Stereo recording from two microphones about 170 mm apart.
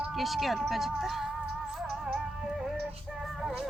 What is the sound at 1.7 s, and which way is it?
Music, 5° right (ahead or behind).